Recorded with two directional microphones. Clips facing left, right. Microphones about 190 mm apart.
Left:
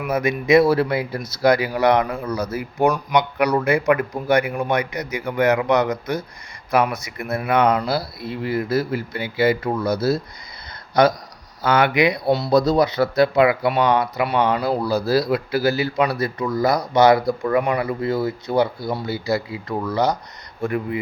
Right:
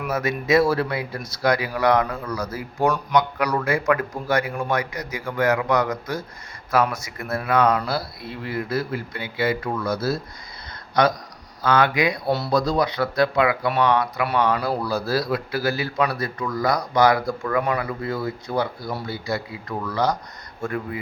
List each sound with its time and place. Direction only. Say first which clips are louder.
0.1 s speech: left 4 dB; 15° left (ahead or behind)
9.9 s speech: left 4 dB; centre (ahead or behind)
11.6 s speech: left 2 dB; 25° left (ahead or behind)
12.7 s speech: left 4 dB; 30° left (ahead or behind)